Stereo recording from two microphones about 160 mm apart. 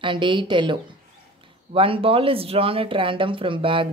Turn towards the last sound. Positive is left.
turn(degrees=-30)  # may be behind; listen again after turning